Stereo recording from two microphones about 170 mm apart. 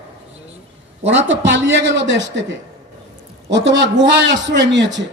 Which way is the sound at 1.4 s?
90° right.